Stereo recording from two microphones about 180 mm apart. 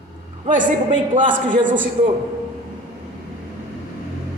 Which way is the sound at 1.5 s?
45° right (ahead or behind).